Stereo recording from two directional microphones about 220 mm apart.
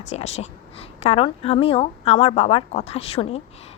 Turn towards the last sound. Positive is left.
turn(degrees=25)  # may be behind; listen again after turning